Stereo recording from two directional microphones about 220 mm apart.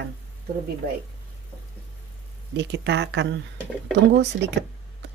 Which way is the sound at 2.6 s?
50° right (ahead or behind).